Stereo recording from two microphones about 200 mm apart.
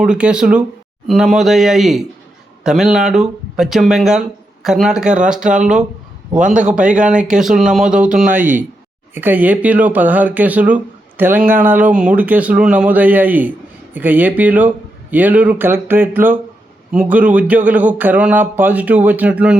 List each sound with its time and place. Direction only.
0.0 s speech: 5° right (ahead or behind)
5.5 s speech: 40° right (ahead or behind)
6.8 s speech: 5° right (ahead or behind)
8.3 s speech: 40° right (ahead or behind)
9.1 s speech: 10° right (ahead or behind)